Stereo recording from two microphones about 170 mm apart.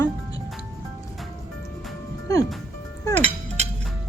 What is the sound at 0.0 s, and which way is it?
Music, 20° left (ahead or behind).